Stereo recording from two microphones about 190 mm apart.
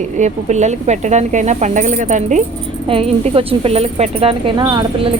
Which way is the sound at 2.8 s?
30° right (ahead or behind).